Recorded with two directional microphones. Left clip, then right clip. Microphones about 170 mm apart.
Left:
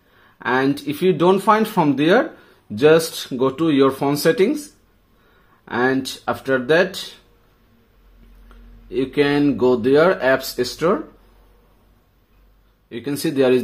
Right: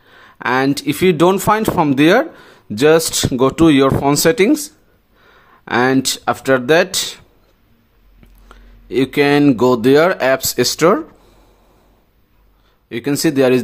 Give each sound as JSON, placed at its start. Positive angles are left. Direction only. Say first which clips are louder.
{"t": 0.1, "sound": "speech", "louder": "right 3 dB", "side_deg": -35}
{"t": 5.7, "sound": "speech", "louder": "right 5 dB", "side_deg": -35}
{"t": 8.5, "sound": "speech", "louder": "right 7 dB", "side_deg": -35}
{"t": 12.9, "sound": "speech", "louder": "right 6 dB", "side_deg": -30}